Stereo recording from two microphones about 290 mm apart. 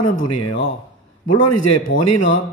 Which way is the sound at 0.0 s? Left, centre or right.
Left.